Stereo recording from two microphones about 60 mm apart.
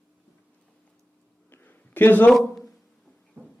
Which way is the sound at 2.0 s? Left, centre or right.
Left.